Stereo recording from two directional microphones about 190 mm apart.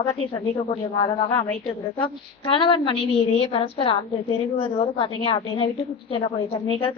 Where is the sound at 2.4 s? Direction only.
25° left (ahead or behind).